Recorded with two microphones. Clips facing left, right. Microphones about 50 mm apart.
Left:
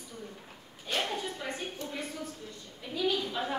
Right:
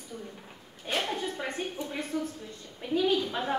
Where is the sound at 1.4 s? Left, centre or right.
Right.